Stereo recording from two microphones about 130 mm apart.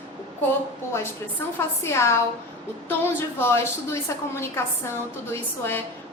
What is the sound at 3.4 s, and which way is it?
A woman's voice, 20° left (ahead or behind).